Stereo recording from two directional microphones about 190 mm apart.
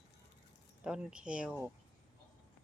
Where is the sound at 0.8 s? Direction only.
5° right (ahead or behind).